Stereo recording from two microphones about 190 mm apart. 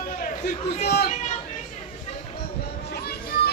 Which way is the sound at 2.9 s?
55° left (ahead or behind).